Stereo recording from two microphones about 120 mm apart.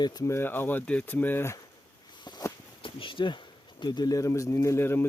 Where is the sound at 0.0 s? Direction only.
35° left (ahead or behind).